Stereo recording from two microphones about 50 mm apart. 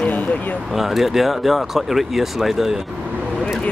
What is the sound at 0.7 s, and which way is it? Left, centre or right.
Speech, centre.